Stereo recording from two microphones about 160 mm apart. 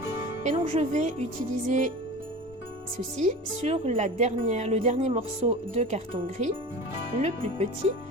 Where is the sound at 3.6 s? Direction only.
45° right (ahead or behind).